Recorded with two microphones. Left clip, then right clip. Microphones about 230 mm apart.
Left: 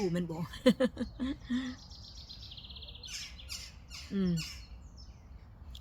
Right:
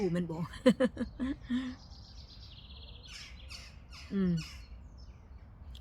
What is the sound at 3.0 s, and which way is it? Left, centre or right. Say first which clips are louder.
Squawk: left 5 dB; left.